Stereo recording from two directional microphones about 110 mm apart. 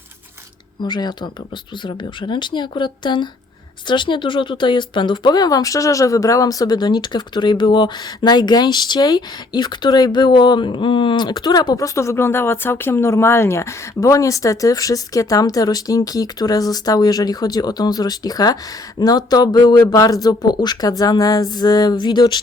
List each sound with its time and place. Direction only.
0.8 s speech: 40° left (ahead or behind)